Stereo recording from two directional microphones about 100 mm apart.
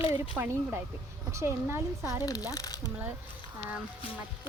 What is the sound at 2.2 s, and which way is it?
Speech, 40° left (ahead or behind).